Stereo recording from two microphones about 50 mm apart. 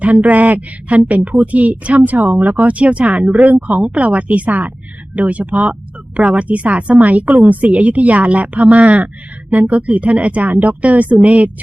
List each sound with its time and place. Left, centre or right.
0.0 s a woman's voice: right